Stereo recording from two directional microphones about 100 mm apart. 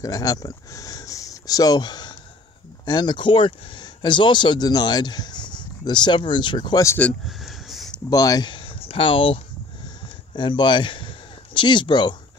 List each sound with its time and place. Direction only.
0.0 s speech: 35° left (ahead or behind)
7.2 s a sound: centre (ahead or behind)
8.1 s speech: 40° left (ahead or behind)
8.5 s a man's voice: 60° left (ahead or behind)